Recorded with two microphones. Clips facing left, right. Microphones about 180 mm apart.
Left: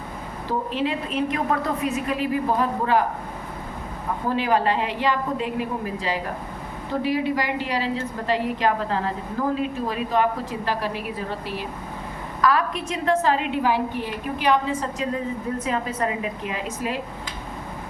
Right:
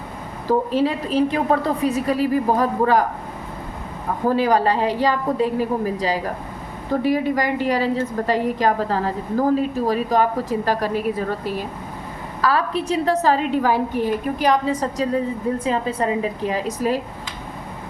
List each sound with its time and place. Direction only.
0.7 s a woman's voice: 40° right (ahead or behind)
4.4 s a woman's voice: 40° right (ahead or behind)
12.4 s a woman's voice: 30° right (ahead or behind)